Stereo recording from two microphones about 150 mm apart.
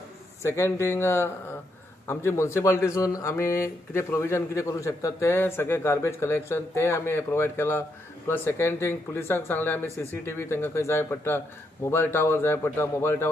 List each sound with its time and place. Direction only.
0.4 s speech: 20° left (ahead or behind)